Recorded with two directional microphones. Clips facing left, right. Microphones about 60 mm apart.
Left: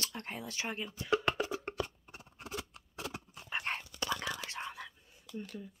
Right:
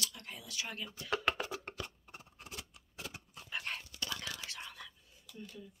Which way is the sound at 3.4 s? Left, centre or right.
Left.